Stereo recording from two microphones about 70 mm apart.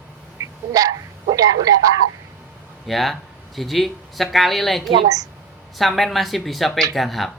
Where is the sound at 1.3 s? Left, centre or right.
Right.